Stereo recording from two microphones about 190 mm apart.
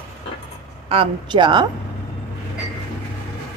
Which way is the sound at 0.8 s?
25° right (ahead or behind).